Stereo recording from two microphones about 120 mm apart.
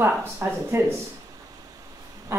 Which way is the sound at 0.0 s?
20° right (ahead or behind).